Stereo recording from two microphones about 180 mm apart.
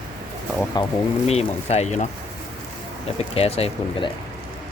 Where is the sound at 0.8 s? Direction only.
25° left (ahead or behind).